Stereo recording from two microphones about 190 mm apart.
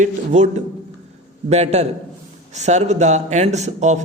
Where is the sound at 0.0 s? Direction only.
40° right (ahead or behind).